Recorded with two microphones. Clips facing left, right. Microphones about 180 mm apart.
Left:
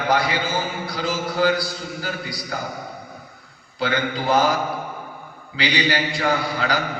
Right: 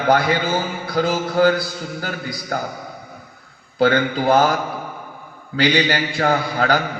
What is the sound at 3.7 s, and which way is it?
Speech, 55° right (ahead or behind).